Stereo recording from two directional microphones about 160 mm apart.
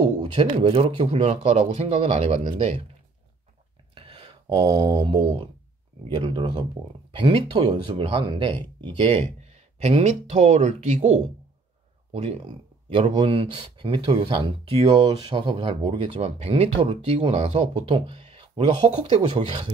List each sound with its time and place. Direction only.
0.2 s speech: 30° right (ahead or behind)
3.9 s a sound: 30° right (ahead or behind)
5.2 s speech: 35° right (ahead or behind)
9.4 s speech: 45° right (ahead or behind)